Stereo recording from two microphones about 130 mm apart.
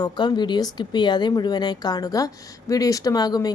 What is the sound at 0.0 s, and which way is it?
A woman's voice, 35° left (ahead or behind).